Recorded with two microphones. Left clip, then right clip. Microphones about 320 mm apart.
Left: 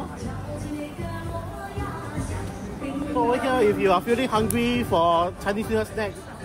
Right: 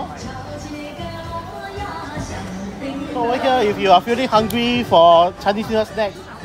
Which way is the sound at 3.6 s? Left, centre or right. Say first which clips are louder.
Right 7 dB; right.